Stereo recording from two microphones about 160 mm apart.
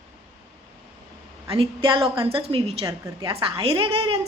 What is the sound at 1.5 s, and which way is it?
A woman's voice, 35° right (ahead or behind).